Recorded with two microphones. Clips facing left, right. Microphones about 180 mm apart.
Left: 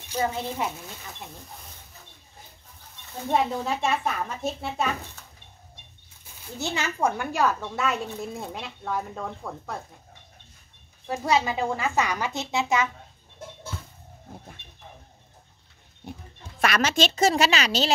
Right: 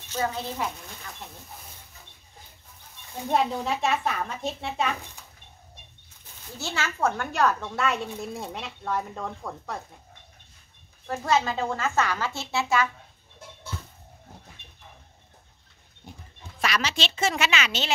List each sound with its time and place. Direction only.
0.1 s a woman's voice: 15° left (ahead or behind)
3.2 s a woman's voice: centre (ahead or behind)
6.6 s a woman's voice: 15° left (ahead or behind)
11.1 s speech: 15° left (ahead or behind)
16.0 s speech: 65° left (ahead or behind)
16.6 s a woman's voice: 50° left (ahead or behind)